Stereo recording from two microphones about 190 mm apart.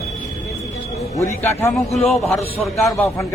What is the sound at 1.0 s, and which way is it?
Speech, 15° left (ahead or behind).